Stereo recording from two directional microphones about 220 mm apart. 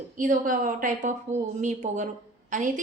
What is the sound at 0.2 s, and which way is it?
Speech, 35° right (ahead or behind).